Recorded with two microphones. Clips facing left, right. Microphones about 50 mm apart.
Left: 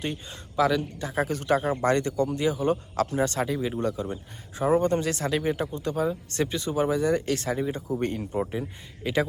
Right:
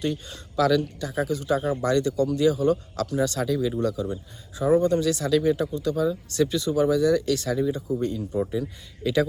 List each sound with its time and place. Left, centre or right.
0.0 s speech: left
1.1 s speech: left
7.9 s speech: left
8.4 s speech: left